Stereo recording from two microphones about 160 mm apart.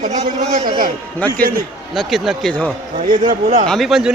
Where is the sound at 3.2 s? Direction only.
50° right (ahead or behind).